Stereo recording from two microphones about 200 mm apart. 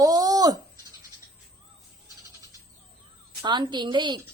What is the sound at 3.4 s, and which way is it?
Speech, 20° right (ahead or behind).